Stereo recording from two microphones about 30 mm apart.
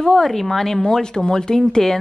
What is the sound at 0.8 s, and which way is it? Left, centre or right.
Speech, left.